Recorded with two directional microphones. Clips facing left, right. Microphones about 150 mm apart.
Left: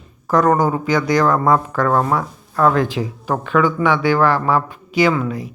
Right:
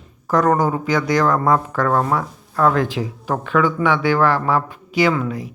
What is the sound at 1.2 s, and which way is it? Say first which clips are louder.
Speech: left 1 dB; 30° left (ahead or behind).